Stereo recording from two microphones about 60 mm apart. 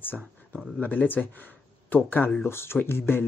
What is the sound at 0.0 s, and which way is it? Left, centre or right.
Speech, left.